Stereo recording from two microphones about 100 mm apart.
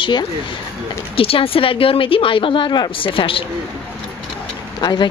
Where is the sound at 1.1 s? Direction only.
70° left (ahead or behind).